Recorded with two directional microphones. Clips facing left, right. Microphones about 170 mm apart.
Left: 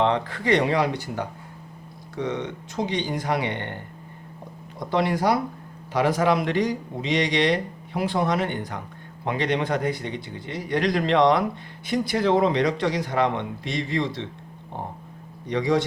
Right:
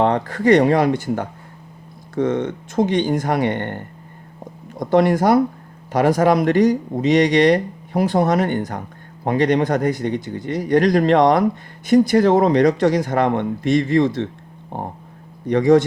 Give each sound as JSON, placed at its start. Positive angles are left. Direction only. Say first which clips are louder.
{"t": 0.0, "sound": "speech", "louder": "right 6 dB", "side_deg": -45}